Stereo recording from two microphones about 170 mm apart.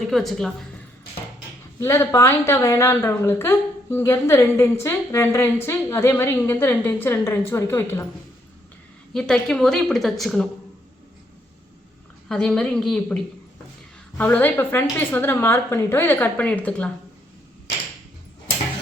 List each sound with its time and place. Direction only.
0.1 s a woman's voice: centre (ahead or behind)
1.8 s a woman's voice: 15° left (ahead or behind)
9.1 s a woman's voice: 5° left (ahead or behind)
12.3 s a woman's voice: 5° left (ahead or behind)
14.2 s a woman's voice: 10° left (ahead or behind)